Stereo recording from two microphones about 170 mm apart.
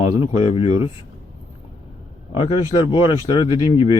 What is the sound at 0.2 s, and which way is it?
Speech, 35° left (ahead or behind).